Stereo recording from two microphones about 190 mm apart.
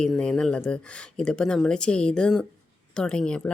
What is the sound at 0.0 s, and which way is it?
Speech, 5° left (ahead or behind).